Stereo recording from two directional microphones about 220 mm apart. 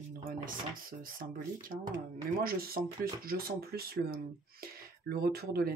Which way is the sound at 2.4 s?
40° right (ahead or behind).